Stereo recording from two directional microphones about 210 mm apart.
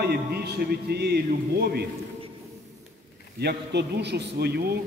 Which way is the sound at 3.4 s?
50° right (ahead or behind).